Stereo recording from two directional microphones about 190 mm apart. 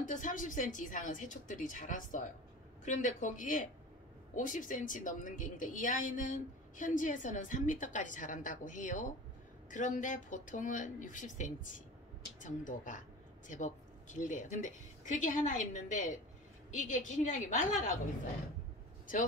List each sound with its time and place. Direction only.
0.0 s a woman's voice: 40° left (ahead or behind)